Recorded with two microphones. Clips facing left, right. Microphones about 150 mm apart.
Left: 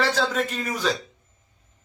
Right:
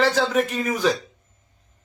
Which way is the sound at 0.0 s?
15° right (ahead or behind).